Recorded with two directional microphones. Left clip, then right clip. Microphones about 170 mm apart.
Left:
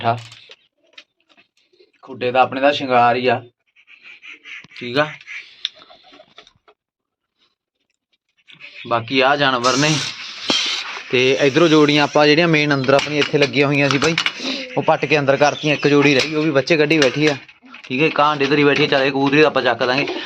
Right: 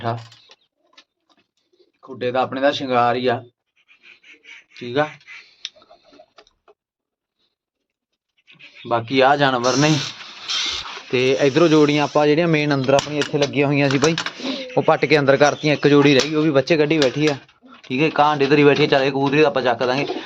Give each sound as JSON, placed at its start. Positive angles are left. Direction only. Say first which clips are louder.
{"t": 2.0, "sound": "speech", "louder": "left 5 dB", "side_deg": 5}
{"t": 4.7, "sound": "speech", "louder": "left 2 dB", "side_deg": 0}
{"t": 5.6, "sound": "tick-tock", "louder": "left 6 dB", "side_deg": 5}
{"t": 8.9, "sound": "speech", "louder": "even", "side_deg": -15}
{"t": 9.6, "sound": "a sound", "louder": "left 1 dB", "side_deg": -20}
{"t": 11.1, "sound": "speech", "louder": "left 2 dB", "side_deg": 0}
{"t": 11.9, "sound": "speech", "louder": "left 3 dB", "side_deg": 15}
{"t": 13.1, "sound": "speech", "louder": "left 4 dB", "side_deg": 20}
{"t": 13.7, "sound": "speech", "louder": "left 1 dB", "side_deg": -10}